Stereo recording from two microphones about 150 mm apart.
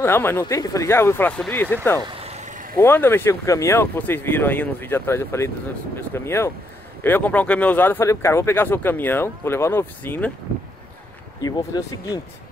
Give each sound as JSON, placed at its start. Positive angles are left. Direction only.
{"t": 0.0, "sound": "speech", "side_deg": 15}
{"t": 2.0, "sound": "vehicle", "side_deg": -40}
{"t": 2.8, "sound": "speech", "side_deg": 15}
{"t": 11.4, "sound": "speech", "side_deg": 25}